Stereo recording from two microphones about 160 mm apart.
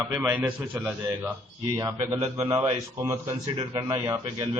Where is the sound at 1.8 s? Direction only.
25° right (ahead or behind).